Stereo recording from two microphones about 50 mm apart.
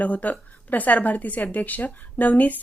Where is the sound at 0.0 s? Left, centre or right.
Left.